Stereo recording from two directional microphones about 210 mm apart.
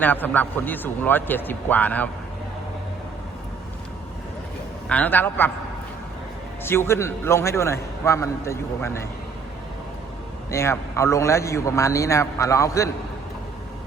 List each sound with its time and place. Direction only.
0.0 s a man's voice: 10° left (ahead or behind)
4.9 s a man's voice: 5° left (ahead or behind)
6.7 s a man's voice: 10° left (ahead or behind)
10.5 s a man's voice: 15° left (ahead or behind)